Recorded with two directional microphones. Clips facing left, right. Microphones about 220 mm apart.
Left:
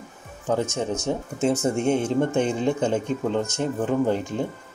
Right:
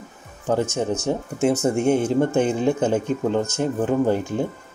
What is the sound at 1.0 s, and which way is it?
Speech, 10° right (ahead or behind).